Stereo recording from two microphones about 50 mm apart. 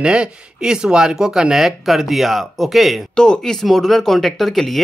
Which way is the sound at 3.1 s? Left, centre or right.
Centre.